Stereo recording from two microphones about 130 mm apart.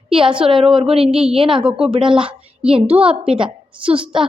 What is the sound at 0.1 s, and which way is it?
A woman's voice, 45° right (ahead or behind).